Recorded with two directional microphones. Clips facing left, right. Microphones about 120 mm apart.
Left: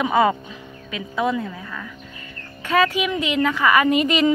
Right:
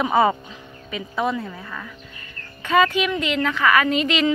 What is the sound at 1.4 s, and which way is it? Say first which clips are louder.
Speech: left 2 dB; 5° right (ahead or behind).